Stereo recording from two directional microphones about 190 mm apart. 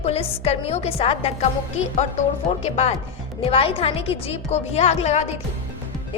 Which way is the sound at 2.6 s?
35° left (ahead or behind).